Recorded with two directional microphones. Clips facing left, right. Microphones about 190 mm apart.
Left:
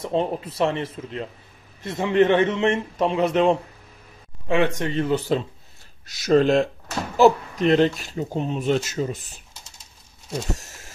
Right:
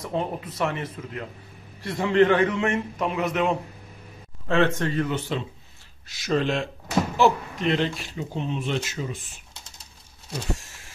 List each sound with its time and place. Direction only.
0.0 s a man's voice: 25° left (ahead or behind)
4.5 s a man's voice: 15° left (ahead or behind)
5.0 s speech: 35° left (ahead or behind)
10.6 s printer: 40° left (ahead or behind)